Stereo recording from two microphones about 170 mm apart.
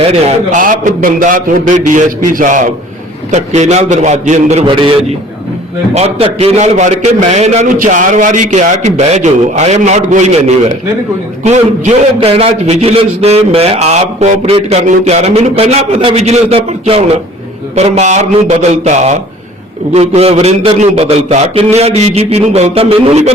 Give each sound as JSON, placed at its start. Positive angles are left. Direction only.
{"t": 0.0, "sound": "a man's voice", "side_deg": -40}
{"t": 0.6, "sound": "a man's voice", "side_deg": -55}
{"t": 4.6, "sound": "a man's voice", "side_deg": -30}